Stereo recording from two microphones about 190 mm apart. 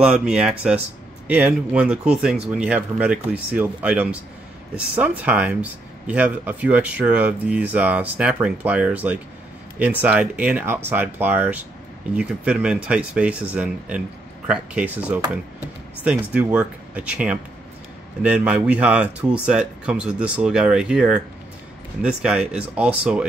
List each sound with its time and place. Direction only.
0.0 s speech: 5° right (ahead or behind)